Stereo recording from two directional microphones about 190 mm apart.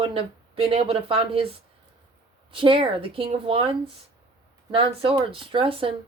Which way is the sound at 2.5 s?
25° right (ahead or behind).